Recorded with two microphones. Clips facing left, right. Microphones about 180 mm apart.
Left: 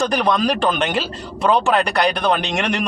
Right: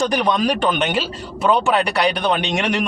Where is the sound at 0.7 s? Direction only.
Centre (ahead or behind).